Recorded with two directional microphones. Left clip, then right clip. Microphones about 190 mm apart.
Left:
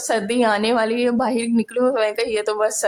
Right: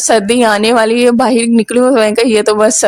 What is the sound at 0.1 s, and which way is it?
A woman's voice, 45° right (ahead or behind).